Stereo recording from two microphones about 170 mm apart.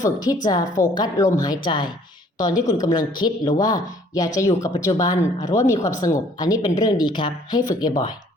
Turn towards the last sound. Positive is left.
turn(degrees=25)  # may be behind; listen again after turning